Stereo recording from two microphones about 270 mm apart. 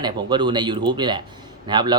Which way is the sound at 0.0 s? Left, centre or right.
Centre.